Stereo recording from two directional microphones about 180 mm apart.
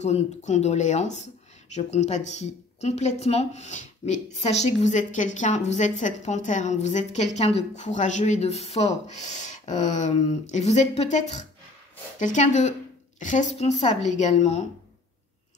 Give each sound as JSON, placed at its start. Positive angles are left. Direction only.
{"t": 0.0, "sound": "a woman's voice", "side_deg": 40}